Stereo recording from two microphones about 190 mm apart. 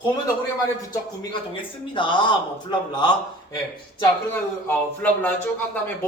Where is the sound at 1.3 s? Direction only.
25° left (ahead or behind).